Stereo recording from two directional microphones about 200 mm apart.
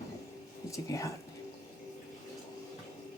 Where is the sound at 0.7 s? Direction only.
15° left (ahead or behind).